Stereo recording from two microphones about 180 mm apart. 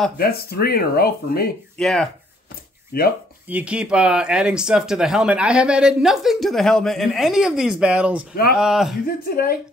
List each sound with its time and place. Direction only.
0.2 s speech: 60° left (ahead or behind)
1.8 s speech: centre (ahead or behind)
2.9 s speech: 55° left (ahead or behind)
3.4 s speech: 5° right (ahead or behind)
9.0 s speech: 55° left (ahead or behind)